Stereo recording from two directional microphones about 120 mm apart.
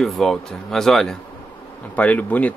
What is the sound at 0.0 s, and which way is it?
Speech, centre (ahead or behind).